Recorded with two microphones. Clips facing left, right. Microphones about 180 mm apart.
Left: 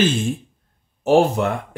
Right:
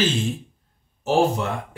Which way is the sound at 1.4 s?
55° left (ahead or behind).